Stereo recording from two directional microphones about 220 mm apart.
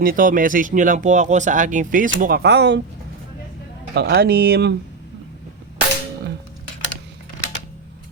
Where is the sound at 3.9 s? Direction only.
45° right (ahead or behind).